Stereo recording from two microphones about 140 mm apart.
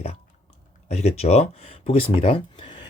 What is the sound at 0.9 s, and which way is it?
Speech, 50° left (ahead or behind).